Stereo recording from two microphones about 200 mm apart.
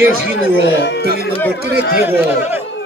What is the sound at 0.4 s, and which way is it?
Speech, 60° left (ahead or behind).